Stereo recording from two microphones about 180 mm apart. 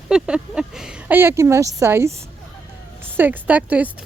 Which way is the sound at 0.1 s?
5° right (ahead or behind).